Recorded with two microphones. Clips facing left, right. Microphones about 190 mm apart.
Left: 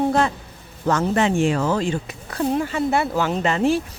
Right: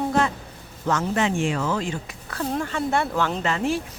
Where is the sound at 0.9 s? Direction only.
35° left (ahead or behind); by 2.6 s 20° left (ahead or behind).